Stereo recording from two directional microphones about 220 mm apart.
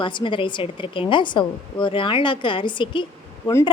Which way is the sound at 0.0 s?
20° left (ahead or behind).